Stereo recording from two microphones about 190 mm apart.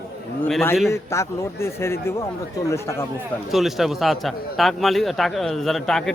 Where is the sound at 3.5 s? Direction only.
Centre (ahead or behind).